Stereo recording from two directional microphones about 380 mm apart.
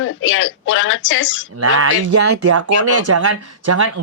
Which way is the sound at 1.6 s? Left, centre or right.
Right.